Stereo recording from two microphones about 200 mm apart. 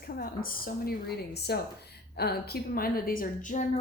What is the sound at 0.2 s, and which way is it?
Speech, 50° left (ahead or behind).